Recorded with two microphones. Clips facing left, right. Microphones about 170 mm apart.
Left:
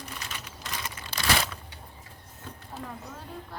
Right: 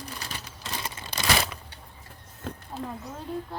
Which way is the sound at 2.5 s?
90° right.